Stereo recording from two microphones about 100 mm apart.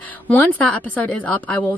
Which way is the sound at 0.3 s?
15° left (ahead or behind).